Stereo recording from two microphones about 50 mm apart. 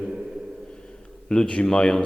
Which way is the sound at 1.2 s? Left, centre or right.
Centre.